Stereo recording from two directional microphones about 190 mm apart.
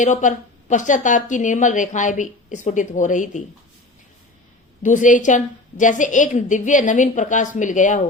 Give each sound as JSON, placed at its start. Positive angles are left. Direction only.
{"t": 0.0, "sound": "a woman's voice", "side_deg": 40}
{"t": 4.8, "sound": "a woman's voice", "side_deg": 40}